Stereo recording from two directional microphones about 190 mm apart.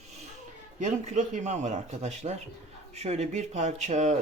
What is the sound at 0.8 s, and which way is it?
Speech, 40° right (ahead or behind).